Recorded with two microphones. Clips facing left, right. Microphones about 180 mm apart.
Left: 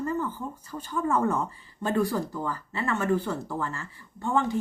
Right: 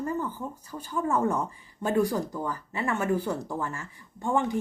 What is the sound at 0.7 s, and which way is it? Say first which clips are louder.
Speech: left 1 dB; 10° right (ahead or behind).